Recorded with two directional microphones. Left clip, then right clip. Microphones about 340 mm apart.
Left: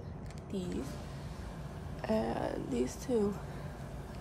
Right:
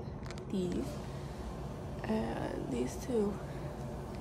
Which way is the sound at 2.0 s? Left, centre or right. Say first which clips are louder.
Left 4 dB; centre.